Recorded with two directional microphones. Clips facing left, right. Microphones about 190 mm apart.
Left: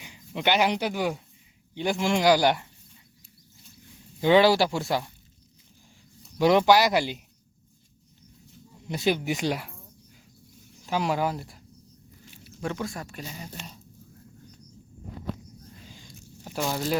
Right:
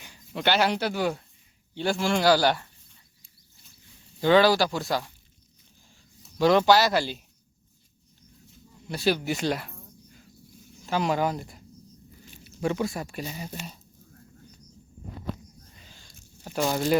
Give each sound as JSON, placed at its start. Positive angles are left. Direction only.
{"t": 0.0, "sound": "speech", "side_deg": 15}
{"t": 4.2, "sound": "speech", "side_deg": 20}
{"t": 6.4, "sound": "speech", "side_deg": 15}
{"t": 8.9, "sound": "speech", "side_deg": 20}
{"t": 9.7, "sound": "cricket", "side_deg": 5}
{"t": 10.8, "sound": "speech", "side_deg": 10}
{"t": 15.9, "sound": "a sound", "side_deg": 10}
{"t": 16.6, "sound": "speech", "side_deg": -5}